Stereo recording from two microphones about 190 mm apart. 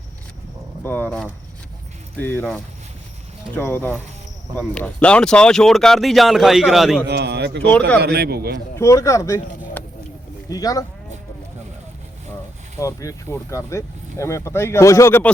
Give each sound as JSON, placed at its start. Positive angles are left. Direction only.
{"t": 0.9, "sound": "speech", "side_deg": 10}
{"t": 3.5, "sound": "speech", "side_deg": 10}
{"t": 7.1, "sound": "a man's voice", "side_deg": -60}
{"t": 8.7, "sound": "speech", "side_deg": 15}
{"t": 12.8, "sound": "speech", "side_deg": 15}